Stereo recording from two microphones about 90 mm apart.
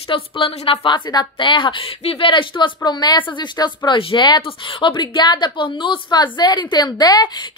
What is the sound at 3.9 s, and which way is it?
A woman's voice, 70° left (ahead or behind).